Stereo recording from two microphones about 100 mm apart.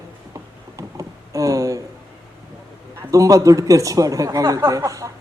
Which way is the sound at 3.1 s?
35° right (ahead or behind).